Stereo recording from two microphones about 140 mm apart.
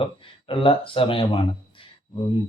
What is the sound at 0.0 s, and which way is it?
Mantra, 40° left (ahead or behind).